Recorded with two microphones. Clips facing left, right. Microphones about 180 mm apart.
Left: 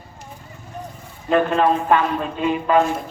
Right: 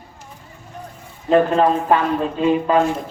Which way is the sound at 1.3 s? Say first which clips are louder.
Right 2 dB; 30° right (ahead or behind).